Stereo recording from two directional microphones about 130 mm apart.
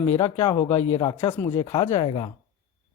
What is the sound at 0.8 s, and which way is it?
Speech, 55° left (ahead or behind).